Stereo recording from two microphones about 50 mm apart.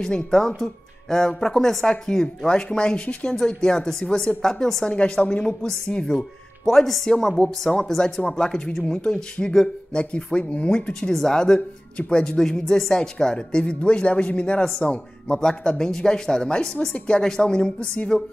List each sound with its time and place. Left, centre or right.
0.0 s speech: centre
10.9 s speech: centre; by 14.6 s left
14.6 s speech: centre
14.9 s speech: centre